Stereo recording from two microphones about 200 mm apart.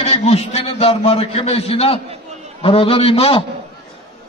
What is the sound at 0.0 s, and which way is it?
A man's voice, 30° left (ahead or behind).